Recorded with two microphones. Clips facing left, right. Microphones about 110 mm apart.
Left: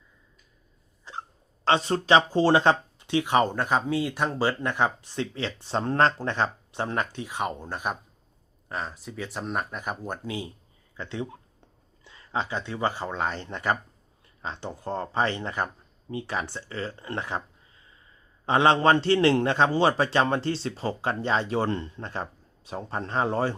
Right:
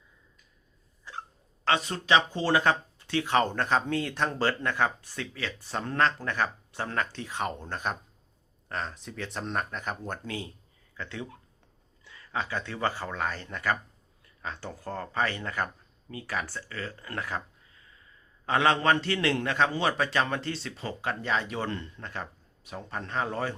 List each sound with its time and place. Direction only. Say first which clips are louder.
1.6 s a man's voice: left 5 dB; 30° left (ahead or behind)